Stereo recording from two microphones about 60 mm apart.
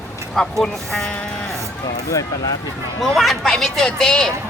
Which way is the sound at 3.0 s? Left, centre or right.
Centre.